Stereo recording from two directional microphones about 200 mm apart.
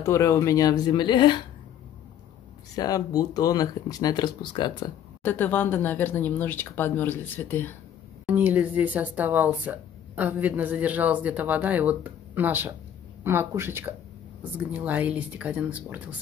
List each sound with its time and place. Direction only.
0.0 s speech: 15° left (ahead or behind)
2.7 s speech: 20° left (ahead or behind)
5.2 s speech: 10° left (ahead or behind)
8.3 s speech: 10° right (ahead or behind)